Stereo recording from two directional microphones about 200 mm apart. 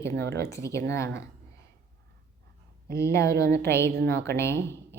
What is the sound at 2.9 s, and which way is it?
A woman's voice, 15° left (ahead or behind).